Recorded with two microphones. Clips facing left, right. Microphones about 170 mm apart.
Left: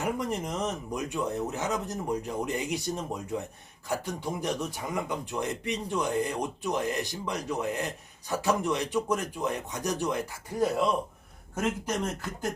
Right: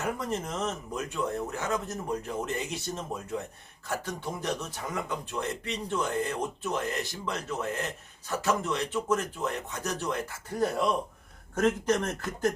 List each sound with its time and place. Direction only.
0.0 s speech: 15° left (ahead or behind)